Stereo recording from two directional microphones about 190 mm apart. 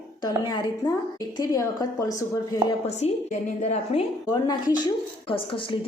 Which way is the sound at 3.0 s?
35° left (ahead or behind).